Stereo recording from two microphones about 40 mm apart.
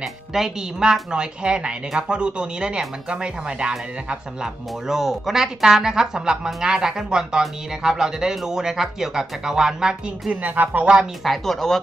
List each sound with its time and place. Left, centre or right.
0.3 s speech: centre
4.8 s speech: centre
10.4 s speech: right
11.2 s speech: centre